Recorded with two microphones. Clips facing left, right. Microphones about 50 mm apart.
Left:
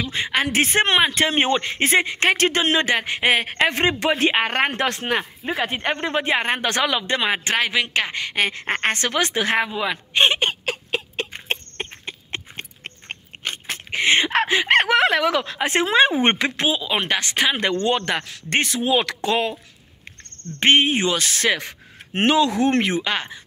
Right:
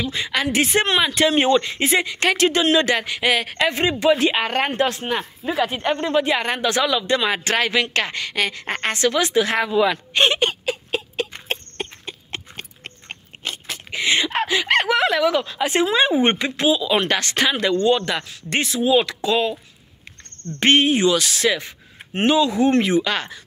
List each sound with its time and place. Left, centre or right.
0.1 s speech: left
5.4 s speech: left
7.3 s a woman's voice: centre; by 9.7 s left
9.7 s a woman's voice: centre
10.6 s a sound: left
11.4 s a sound: left
14.5 s speech: left
16.5 s speech: left; by 17.6 s centre
17.6 s speech: left
20.5 s a woman's voice: left
20.9 s speech: left
23.0 s a woman's voice: centre